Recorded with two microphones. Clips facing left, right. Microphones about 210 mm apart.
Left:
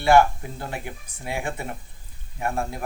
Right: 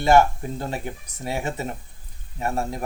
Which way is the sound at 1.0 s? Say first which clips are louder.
Right 3 dB; 40° right (ahead or behind).